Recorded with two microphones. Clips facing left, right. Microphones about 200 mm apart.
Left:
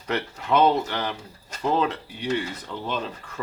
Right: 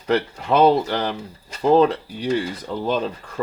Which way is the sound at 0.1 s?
35° right (ahead or behind).